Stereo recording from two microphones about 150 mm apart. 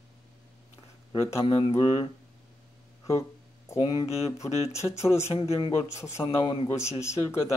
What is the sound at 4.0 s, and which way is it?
Speech, 45° left (ahead or behind).